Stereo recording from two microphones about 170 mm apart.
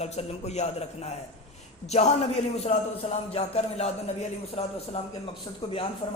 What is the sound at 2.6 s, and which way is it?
Speech, 40° left (ahead or behind).